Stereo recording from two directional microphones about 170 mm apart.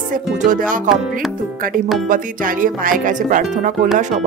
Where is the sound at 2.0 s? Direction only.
50° right (ahead or behind).